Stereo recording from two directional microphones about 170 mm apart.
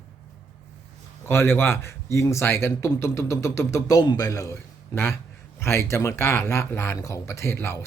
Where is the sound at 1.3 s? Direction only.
15° left (ahead or behind).